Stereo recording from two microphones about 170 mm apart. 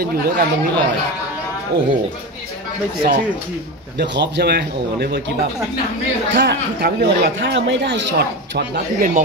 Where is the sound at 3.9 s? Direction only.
85° right.